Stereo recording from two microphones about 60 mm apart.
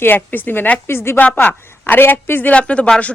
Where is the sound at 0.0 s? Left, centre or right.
Left.